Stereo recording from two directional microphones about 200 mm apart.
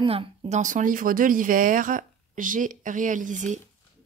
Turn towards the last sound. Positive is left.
turn(degrees=-40)  # may be behind; listen again after turning